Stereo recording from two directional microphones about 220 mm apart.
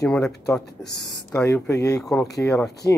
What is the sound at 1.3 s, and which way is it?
Speech, 10° left (ahead or behind).